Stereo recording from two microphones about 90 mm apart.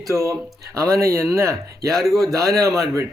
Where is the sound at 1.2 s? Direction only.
5° left (ahead or behind).